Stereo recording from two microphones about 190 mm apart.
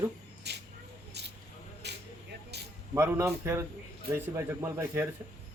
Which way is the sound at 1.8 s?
60° right (ahead or behind).